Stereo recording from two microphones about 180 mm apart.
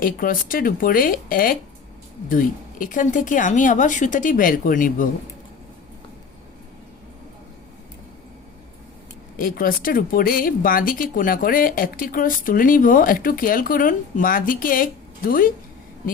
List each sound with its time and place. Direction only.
0.0 s speech: 50° left (ahead or behind)
9.4 s speech: 55° left (ahead or behind)